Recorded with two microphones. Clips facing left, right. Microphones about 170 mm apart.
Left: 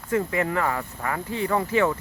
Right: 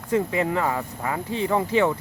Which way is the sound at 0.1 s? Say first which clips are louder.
Right 2 dB; 20° right (ahead or behind).